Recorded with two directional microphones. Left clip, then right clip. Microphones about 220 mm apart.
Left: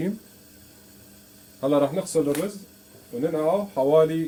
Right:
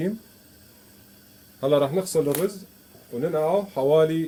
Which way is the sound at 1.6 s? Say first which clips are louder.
Right 1 dB; 35° right (ahead or behind).